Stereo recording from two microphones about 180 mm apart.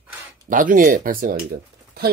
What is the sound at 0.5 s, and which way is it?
Speech, 50° right (ahead or behind).